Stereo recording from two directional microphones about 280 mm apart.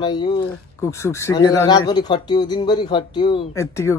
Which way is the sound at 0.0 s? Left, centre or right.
Centre.